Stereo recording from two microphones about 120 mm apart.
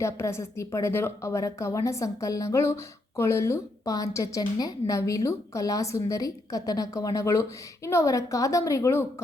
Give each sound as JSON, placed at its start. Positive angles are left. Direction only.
{"t": 0.0, "sound": "a woman's voice", "side_deg": 25}